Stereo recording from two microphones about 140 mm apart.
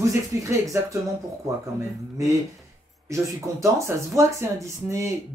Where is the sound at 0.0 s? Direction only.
20° right (ahead or behind).